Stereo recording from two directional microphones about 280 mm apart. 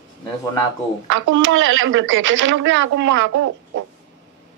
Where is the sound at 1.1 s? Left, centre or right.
Right.